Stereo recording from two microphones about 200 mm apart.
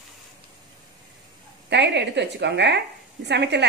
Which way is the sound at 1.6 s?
60° right (ahead or behind).